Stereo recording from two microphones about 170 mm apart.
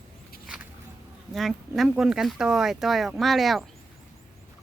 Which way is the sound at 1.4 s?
Centre (ahead or behind).